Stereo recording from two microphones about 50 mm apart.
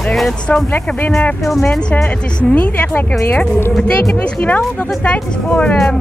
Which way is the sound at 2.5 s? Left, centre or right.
Left.